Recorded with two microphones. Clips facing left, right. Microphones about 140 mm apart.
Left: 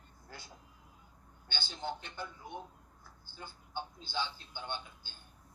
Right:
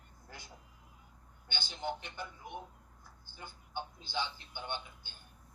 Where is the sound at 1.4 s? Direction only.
15° right (ahead or behind).